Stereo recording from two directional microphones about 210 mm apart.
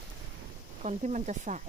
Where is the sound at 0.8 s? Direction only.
35° right (ahead or behind).